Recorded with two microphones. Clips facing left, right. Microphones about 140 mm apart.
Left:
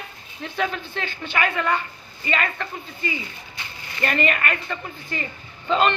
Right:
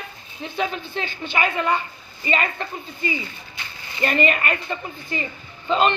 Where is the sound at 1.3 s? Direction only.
15° right (ahead or behind).